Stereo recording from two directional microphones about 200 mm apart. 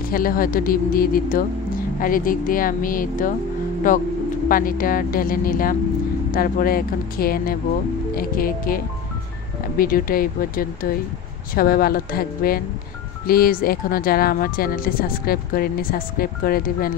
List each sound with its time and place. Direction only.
0.1 s speech: 45° left (ahead or behind)